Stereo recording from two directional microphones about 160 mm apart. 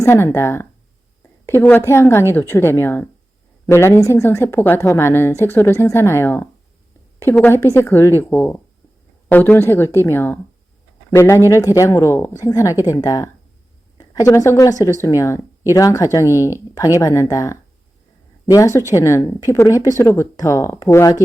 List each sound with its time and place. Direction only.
0.0 s speech: 15° left (ahead or behind)